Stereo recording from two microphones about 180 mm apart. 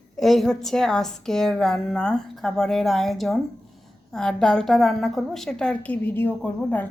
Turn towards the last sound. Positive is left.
turn(degrees=10)  # may be behind; listen again after turning